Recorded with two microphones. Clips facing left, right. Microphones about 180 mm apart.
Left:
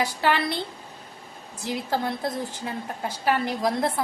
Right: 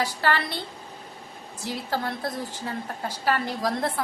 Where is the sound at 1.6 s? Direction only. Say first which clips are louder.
Left 2 dB; 20° left (ahead or behind).